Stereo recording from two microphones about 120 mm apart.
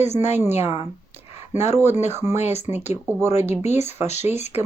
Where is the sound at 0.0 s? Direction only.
65° left (ahead or behind).